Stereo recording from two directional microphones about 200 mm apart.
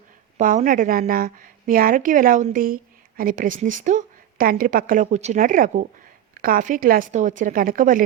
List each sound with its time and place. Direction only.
0.3 s a woman's voice: 40° right (ahead or behind)